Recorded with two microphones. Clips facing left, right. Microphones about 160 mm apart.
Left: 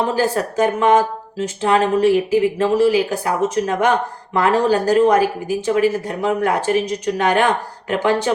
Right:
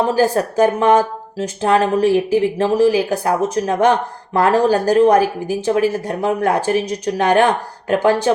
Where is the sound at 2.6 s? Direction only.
35° right (ahead or behind).